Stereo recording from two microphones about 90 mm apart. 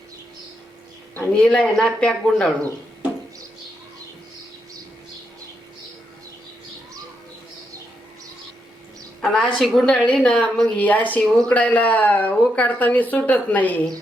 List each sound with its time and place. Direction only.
1.1 s speech: 15° left (ahead or behind)
9.2 s a woman's voice: 5° left (ahead or behind)